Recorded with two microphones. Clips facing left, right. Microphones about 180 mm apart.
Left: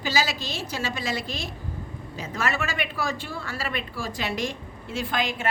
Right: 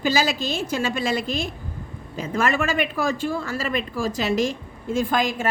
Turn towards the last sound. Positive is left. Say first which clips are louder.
# right 6 dB
turn(degrees=-45)  # may be behind; listen again after turning